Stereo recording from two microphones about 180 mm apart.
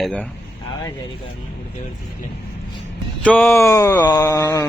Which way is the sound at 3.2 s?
10° left (ahead or behind).